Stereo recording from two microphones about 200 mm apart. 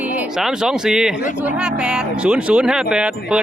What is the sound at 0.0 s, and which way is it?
A man's voice, 5° right (ahead or behind).